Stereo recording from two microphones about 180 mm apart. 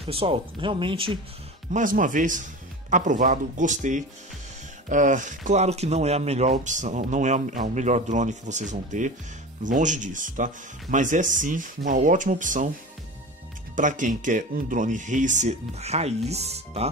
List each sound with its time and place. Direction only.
0.0 s speech: 30° right (ahead or behind)
1.7 s speech: 45° right (ahead or behind)
13.7 s speech: 45° right (ahead or behind)